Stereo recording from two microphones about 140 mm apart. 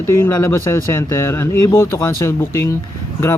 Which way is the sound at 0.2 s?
20° left (ahead or behind).